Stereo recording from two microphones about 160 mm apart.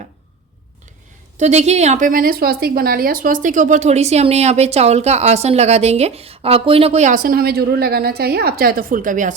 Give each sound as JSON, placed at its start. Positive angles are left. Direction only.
{"t": 1.4, "sound": "a woman's voice", "side_deg": -45}